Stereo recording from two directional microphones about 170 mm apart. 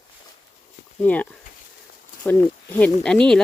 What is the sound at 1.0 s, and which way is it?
Speech, 10° left (ahead or behind).